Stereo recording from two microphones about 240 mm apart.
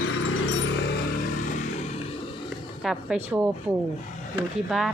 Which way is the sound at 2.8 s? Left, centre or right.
Centre.